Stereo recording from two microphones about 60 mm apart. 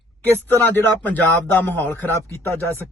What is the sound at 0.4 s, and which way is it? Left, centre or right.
Speech, left.